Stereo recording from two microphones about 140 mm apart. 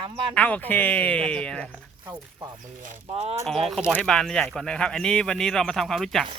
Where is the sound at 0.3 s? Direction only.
10° left (ahead or behind).